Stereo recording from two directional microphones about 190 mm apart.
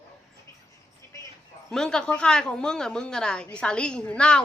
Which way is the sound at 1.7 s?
5° left (ahead or behind).